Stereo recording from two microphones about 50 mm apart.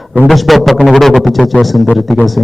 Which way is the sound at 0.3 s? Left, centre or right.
Centre.